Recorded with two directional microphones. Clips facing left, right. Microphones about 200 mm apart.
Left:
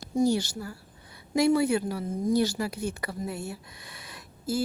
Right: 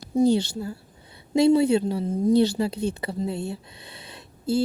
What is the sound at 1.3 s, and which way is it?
A woman's voice, 25° right (ahead or behind).